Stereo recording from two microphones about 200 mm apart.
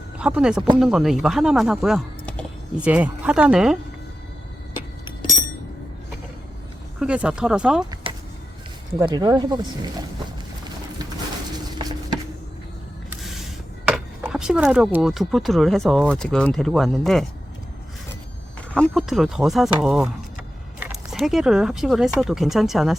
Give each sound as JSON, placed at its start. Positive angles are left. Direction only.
{"t": 0.2, "sound": "speech", "side_deg": -5}
{"t": 7.0, "sound": "speech", "side_deg": -5}
{"t": 8.1, "sound": "a sound", "side_deg": -25}
{"t": 9.0, "sound": "speech", "side_deg": -20}
{"t": 11.5, "sound": "a sound", "side_deg": -20}
{"t": 13.2, "sound": "speech", "side_deg": 0}
{"t": 18.7, "sound": "speech", "side_deg": 0}